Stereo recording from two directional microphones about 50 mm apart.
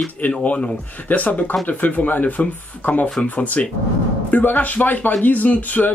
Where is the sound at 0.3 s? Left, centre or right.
Left.